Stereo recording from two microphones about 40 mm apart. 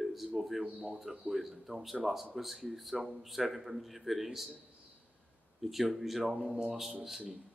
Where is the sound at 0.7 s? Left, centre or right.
Right.